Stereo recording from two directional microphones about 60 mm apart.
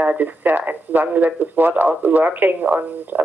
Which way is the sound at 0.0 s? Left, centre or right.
Right.